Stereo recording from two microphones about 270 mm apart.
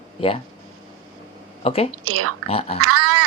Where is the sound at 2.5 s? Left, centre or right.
Left.